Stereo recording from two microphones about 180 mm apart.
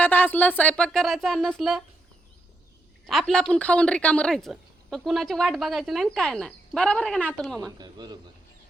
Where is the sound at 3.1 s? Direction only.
Centre (ahead or behind).